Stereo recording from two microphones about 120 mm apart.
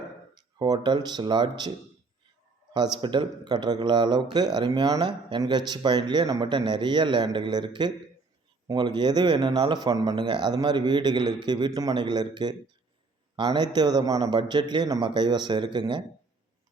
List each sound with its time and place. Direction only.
0.6 s a man's voice: 35° right (ahead or behind)
2.7 s a man's voice: 40° right (ahead or behind)